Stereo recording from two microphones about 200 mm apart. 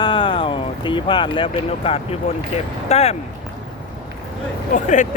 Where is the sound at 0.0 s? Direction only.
25° left (ahead or behind).